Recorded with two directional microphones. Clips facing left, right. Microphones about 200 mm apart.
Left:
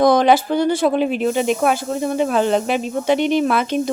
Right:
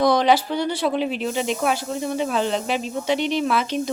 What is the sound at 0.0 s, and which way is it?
Speech, 50° left (ahead or behind).